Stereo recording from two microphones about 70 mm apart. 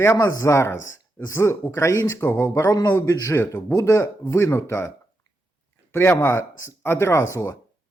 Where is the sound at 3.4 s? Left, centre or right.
Left.